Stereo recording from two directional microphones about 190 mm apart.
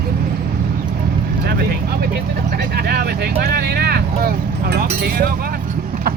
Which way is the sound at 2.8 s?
55° right (ahead or behind).